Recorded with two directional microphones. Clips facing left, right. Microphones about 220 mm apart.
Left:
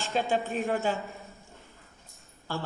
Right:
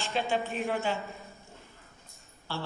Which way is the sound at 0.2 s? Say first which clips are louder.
Left 3 dB; 45° left (ahead or behind).